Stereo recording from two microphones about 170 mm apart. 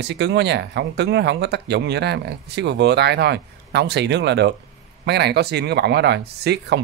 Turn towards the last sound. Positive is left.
turn(degrees=-75)  # may be behind; listen again after turning